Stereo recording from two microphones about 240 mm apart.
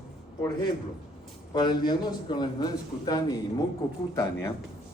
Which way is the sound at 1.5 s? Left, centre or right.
Centre.